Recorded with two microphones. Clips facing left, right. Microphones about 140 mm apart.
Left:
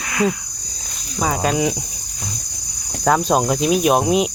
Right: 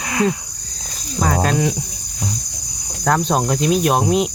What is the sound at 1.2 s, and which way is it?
Speech, 5° left (ahead or behind).